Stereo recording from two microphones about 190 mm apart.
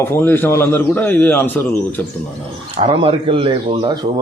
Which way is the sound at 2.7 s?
30° right (ahead or behind).